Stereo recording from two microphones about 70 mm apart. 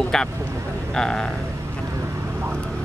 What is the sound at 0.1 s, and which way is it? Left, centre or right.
A man's voice, centre.